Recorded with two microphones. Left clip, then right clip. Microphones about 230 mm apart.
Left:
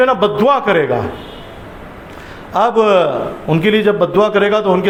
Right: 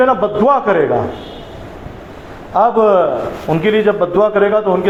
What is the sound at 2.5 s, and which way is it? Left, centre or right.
A man's voice, left.